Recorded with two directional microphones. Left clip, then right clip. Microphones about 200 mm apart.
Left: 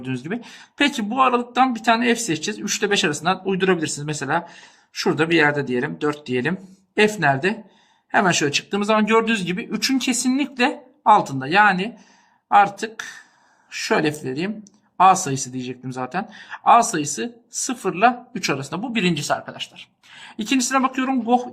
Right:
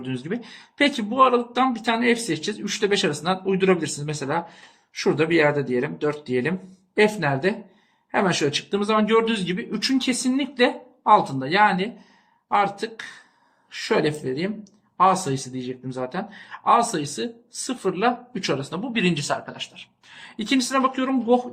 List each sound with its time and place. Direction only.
0.0 s speech: 30° left (ahead or behind)